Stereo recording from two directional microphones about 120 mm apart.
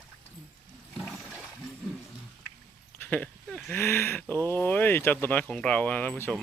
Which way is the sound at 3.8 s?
20° left (ahead or behind).